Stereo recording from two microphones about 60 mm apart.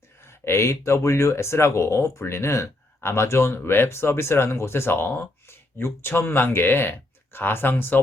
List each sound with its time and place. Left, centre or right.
0.3 s speech: left